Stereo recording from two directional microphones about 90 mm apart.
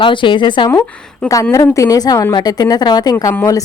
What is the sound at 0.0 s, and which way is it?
Speech, 65° left (ahead or behind).